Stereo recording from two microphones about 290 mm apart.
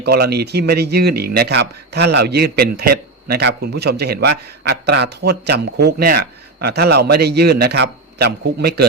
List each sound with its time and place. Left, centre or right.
0.0 s speech: right